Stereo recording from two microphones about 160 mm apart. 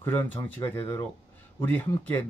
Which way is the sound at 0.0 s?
15° left (ahead or behind).